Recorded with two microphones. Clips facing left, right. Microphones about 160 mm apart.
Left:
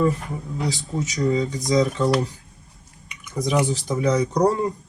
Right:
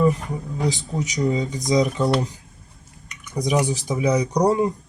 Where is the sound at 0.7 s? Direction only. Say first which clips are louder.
Right 1 dB; 15° right (ahead or behind).